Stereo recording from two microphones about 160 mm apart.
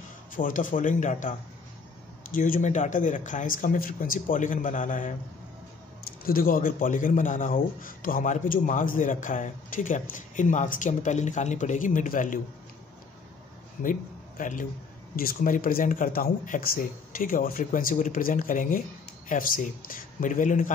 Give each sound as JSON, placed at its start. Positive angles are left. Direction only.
{"t": 0.3, "sound": "speech", "side_deg": 55}
{"t": 2.3, "sound": "speech", "side_deg": 55}
{"t": 6.2, "sound": "speech", "side_deg": 65}
{"t": 13.8, "sound": "a man's voice", "side_deg": 55}